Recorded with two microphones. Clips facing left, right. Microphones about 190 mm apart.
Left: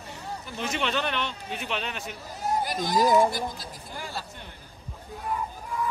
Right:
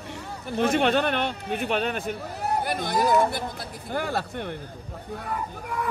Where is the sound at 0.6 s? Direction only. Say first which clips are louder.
Right 8 dB; 55° right (ahead or behind).